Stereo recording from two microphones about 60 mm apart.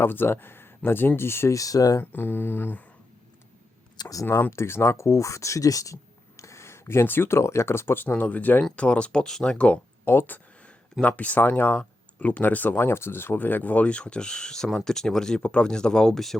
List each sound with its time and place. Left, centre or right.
0.0 s speech: left
1.5 s speech: left
2.0 s speech: left
4.3 s speech: left
4.5 s speech: left
8.0 s speech: left
10.1 s speech: left; by 16.4 s centre